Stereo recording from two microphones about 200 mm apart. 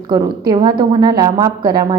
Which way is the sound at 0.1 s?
20° right (ahead or behind).